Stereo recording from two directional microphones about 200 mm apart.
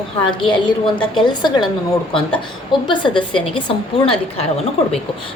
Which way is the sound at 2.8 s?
25° left (ahead or behind).